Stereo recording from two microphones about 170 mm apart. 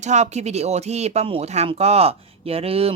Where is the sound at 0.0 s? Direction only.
40° right (ahead or behind).